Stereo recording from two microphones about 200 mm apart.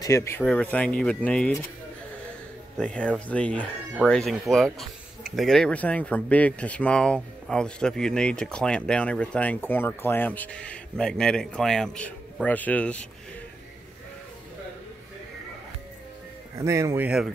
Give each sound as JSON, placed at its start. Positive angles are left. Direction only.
{"t": 0.0, "sound": "speech", "side_deg": 15}
{"t": 2.8, "sound": "speech", "side_deg": 5}
{"t": 16.5, "sound": "speech", "side_deg": -15}